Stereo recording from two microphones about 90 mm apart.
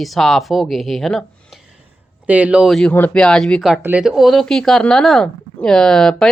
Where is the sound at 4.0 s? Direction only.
5° right (ahead or behind).